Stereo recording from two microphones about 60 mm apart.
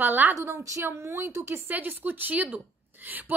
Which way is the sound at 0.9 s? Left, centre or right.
Right.